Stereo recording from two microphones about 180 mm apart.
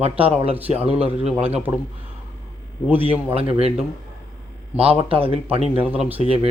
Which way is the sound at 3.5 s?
35° right (ahead or behind).